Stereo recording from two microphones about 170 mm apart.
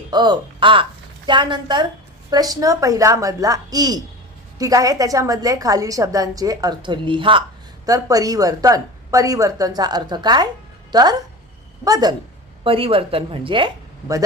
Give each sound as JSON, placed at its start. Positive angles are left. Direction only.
{"t": 0.1, "sound": "a woman's voice", "side_deg": -25}